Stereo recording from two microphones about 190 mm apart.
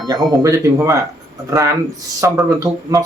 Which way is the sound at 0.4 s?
15° right (ahead or behind).